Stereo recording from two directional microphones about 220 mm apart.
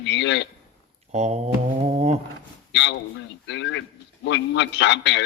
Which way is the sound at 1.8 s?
30° right (ahead or behind).